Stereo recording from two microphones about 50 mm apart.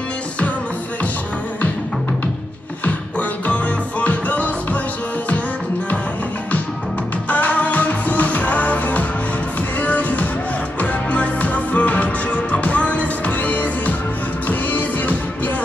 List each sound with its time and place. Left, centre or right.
2.8 s music: left
7.2 s music: left